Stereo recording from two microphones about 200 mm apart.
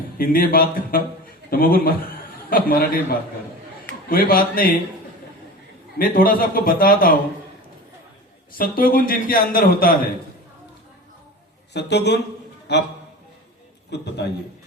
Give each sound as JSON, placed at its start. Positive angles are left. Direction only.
{"t": 0.2, "sound": "a man's voice", "side_deg": 45}
{"t": 6.0, "sound": "a man's voice", "side_deg": 45}
{"t": 8.5, "sound": "a man's voice", "side_deg": 45}
{"t": 11.7, "sound": "a man's voice", "side_deg": 60}
{"t": 13.9, "sound": "a man's voice", "side_deg": 55}